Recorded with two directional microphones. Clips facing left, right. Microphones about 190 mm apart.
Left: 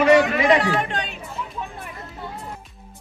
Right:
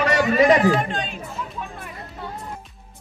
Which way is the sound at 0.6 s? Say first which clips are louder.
Right 3 dB; 70° left (ahead or behind).